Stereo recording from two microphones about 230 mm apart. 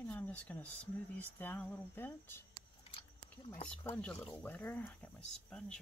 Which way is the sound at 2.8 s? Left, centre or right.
Left.